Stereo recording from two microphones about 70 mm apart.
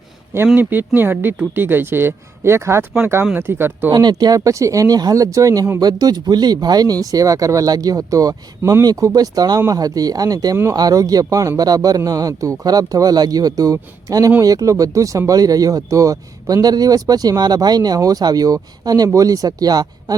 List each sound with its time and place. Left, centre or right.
0.5 s speech: right
3.9 s speech: right
5.8 s speech: right
7.0 s speech: right
8.8 s speech: right